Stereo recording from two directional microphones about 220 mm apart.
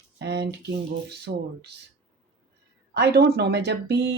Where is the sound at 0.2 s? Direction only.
50° right (ahead or behind).